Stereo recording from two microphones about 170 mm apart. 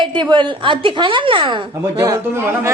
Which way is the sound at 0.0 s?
25° right (ahead or behind).